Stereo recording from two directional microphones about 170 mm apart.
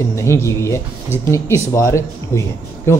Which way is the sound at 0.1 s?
15° left (ahead or behind).